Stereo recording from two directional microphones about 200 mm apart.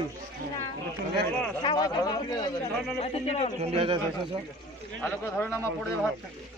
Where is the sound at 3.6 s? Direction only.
30° right (ahead or behind).